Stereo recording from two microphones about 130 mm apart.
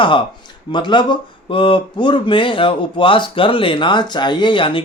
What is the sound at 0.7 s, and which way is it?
Speech, 35° left (ahead or behind).